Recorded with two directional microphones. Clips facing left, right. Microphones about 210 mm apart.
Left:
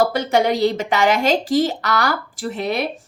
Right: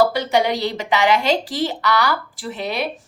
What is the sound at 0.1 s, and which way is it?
A woman's voice, 50° left (ahead or behind).